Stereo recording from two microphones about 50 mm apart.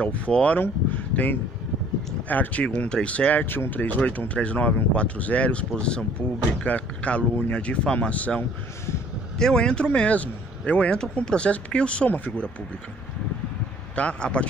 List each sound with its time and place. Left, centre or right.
0.3 s speech: left
3.4 s speech: left
9.4 s speech: centre
13.9 s speech: left